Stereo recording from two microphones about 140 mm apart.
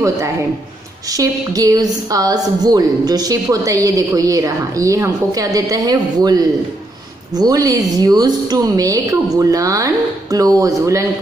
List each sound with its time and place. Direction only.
1.1 s a woman's voice: 25° right (ahead or behind)